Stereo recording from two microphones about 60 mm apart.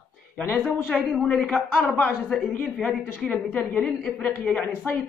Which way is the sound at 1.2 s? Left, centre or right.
Centre.